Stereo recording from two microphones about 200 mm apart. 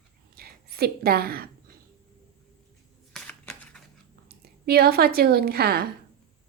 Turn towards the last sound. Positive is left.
turn(degrees=-50)  # may be behind; listen again after turning